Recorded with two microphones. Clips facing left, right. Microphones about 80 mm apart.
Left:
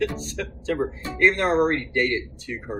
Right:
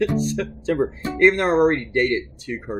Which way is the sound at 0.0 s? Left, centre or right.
Right.